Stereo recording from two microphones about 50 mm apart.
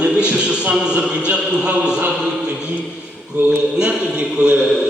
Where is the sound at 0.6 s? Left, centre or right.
Centre.